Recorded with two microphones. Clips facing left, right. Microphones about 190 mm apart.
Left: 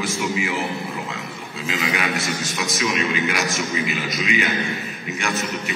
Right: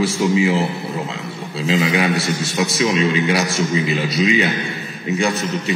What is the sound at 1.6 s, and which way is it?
A man's voice, 30° right (ahead or behind).